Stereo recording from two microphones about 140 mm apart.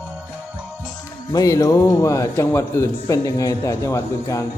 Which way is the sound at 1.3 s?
25° left (ahead or behind).